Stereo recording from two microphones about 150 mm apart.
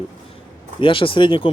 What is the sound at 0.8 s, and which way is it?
Speech, 35° left (ahead or behind).